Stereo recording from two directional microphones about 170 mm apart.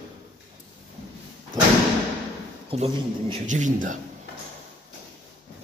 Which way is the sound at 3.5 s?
45° right (ahead or behind).